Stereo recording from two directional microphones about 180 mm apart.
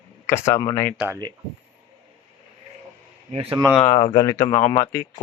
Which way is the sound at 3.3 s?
30° right (ahead or behind).